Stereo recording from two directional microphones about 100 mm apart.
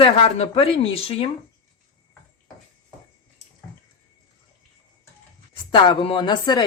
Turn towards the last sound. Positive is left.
turn(degrees=45)  # may be behind; listen again after turning